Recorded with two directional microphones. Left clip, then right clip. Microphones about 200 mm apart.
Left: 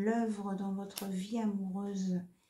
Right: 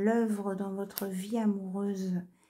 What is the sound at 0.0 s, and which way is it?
Speech, 50° right (ahead or behind).